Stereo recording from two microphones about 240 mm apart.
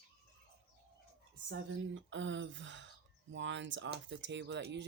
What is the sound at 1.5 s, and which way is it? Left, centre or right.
Speech, right.